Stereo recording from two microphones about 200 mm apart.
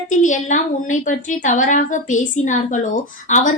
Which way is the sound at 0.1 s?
40° left (ahead or behind).